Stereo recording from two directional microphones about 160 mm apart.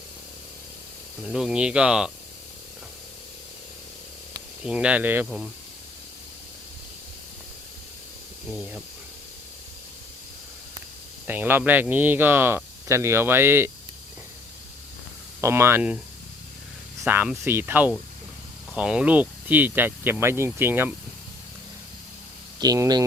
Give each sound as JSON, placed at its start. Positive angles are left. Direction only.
{"t": 1.3, "sound": "speech", "side_deg": -5}
{"t": 4.6, "sound": "speech", "side_deg": -5}
{"t": 11.3, "sound": "speech", "side_deg": -10}
{"t": 15.4, "sound": "speech", "side_deg": -15}
{"t": 17.1, "sound": "speech", "side_deg": -15}
{"t": 22.6, "sound": "speech", "side_deg": -25}